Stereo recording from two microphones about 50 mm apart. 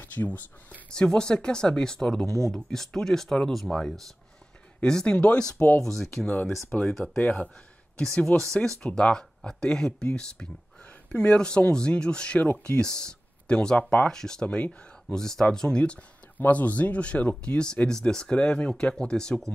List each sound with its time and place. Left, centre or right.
0.0 s a sound: left
0.8 s speech: centre
5.8 s speech: centre
8.3 s speech: left
8.6 s speech: centre; by 12.8 s left
12.8 s speech: centre
15.1 s speech: centre
16.3 s speech: left
17.8 s speech: centre